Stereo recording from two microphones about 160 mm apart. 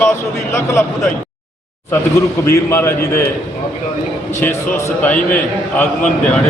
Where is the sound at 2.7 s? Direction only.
15° left (ahead or behind).